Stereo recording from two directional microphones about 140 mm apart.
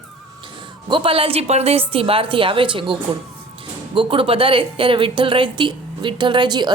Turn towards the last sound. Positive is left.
turn(degrees=-30)  # may be behind; listen again after turning